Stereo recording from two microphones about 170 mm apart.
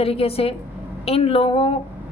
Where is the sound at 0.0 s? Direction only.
35° left (ahead or behind).